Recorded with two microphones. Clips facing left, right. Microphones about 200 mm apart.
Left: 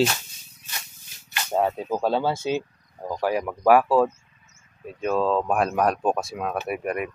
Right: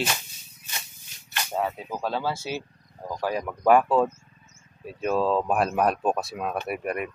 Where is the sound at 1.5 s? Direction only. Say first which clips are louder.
Left 6 dB; 35° left (ahead or behind).